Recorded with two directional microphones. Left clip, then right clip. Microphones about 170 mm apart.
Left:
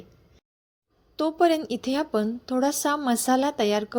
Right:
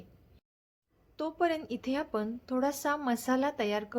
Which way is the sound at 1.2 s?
30° left (ahead or behind).